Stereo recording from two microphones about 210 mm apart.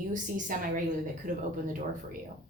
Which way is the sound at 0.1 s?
40° right (ahead or behind).